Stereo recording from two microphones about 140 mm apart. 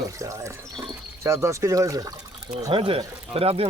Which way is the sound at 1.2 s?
20° right (ahead or behind).